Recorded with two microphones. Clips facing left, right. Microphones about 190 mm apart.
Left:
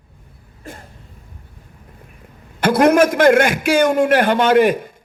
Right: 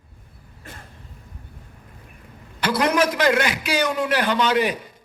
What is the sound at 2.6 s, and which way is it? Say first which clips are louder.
A man's voice: left 8 dB; 50° left (ahead or behind).